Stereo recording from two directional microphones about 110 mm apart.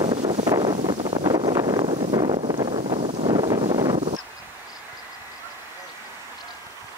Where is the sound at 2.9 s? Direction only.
65° right (ahead or behind).